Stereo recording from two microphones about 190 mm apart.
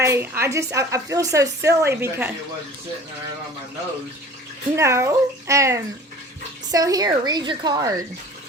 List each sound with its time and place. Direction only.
0.0 s a woman's voice: 15° right (ahead or behind)
4.8 s a woman's voice: 15° right (ahead or behind)